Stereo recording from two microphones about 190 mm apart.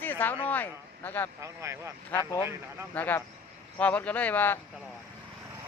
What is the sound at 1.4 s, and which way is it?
Speech, 15° right (ahead or behind).